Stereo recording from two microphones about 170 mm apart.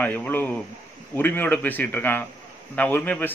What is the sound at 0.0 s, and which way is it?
A man's voice, 10° left (ahead or behind).